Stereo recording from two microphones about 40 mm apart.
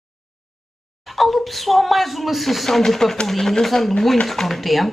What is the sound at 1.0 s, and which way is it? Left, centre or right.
Speech, centre.